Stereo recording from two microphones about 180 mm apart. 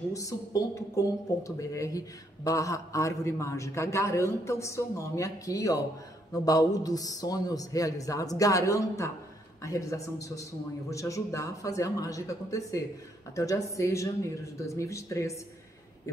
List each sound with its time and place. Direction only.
0.1 s a man's voice: 20° left (ahead or behind)